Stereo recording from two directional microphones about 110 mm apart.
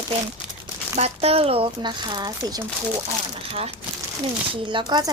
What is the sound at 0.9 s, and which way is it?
Speech, 70° right (ahead or behind).